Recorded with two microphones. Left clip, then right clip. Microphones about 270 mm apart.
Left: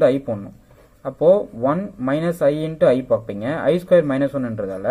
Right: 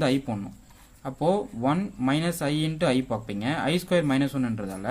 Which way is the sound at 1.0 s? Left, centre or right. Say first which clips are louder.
Left 10 dB; centre.